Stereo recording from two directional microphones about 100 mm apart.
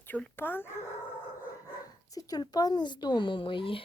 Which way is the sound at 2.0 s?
40° left (ahead or behind).